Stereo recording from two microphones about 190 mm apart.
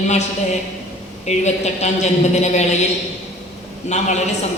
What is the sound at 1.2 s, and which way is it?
A woman's voice, 35° left (ahead or behind).